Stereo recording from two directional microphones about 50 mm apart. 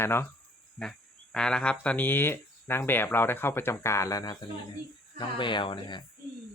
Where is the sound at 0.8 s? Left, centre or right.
Centre.